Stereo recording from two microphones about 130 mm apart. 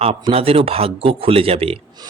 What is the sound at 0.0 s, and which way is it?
Speech, 50° right (ahead or behind).